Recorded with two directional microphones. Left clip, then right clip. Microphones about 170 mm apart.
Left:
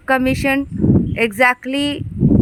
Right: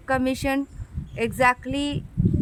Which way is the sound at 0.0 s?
35° left (ahead or behind).